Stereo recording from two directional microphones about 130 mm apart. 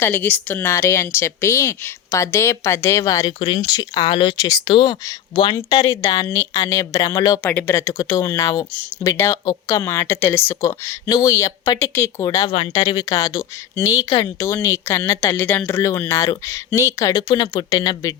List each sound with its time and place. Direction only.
0.0 s speech: 15° left (ahead or behind); by 4.4 s 40° left (ahead or behind)
4.4 s speech: 30° left (ahead or behind)
7.4 s speech: 15° left (ahead or behind)
12.5 s speech: 35° left (ahead or behind)